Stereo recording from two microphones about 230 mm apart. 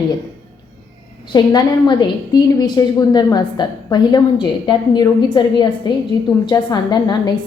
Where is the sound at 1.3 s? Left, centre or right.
Centre.